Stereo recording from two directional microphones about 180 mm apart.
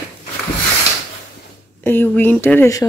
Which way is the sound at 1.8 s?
10° left (ahead or behind).